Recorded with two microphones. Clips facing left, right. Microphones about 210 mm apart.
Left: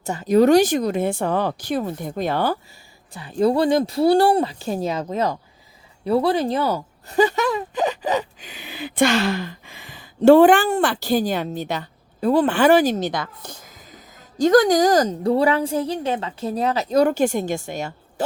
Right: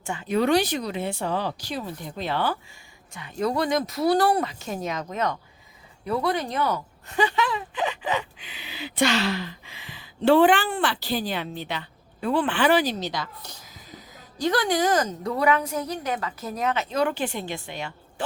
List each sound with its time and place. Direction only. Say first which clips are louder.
0.0 s speech: left 8 dB; 40° left (ahead or behind)
3.1 s speech: left 7 dB; 35° left (ahead or behind)